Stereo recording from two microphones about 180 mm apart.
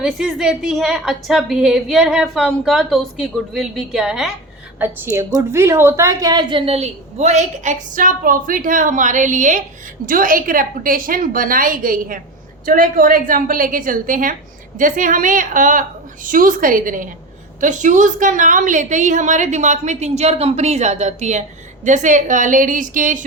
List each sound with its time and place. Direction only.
0.0 s a woman's voice: centre (ahead or behind)
4.8 s a woman's voice: 10° right (ahead or behind); by 23.2 s 45° right (ahead or behind)